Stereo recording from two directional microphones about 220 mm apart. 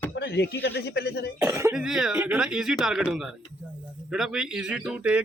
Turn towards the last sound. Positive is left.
turn(degrees=-5)  # may be behind; listen again after turning